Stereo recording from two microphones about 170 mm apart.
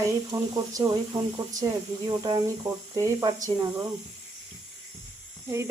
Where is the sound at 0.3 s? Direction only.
20° right (ahead or behind).